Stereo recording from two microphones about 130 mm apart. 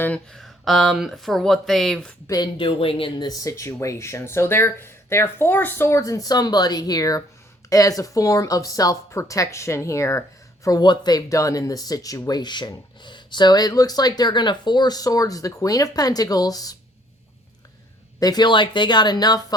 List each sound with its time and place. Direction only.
0.0 s speech: 10° left (ahead or behind)
2.2 s a woman's voice: 30° left (ahead or behind)
2.6 s speech: 45° left (ahead or behind)
3.2 s a woman's voice: 25° left (ahead or behind)
18.2 s speech: 30° left (ahead or behind)